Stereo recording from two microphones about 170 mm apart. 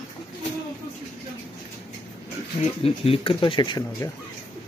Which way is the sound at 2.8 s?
35° left (ahead or behind).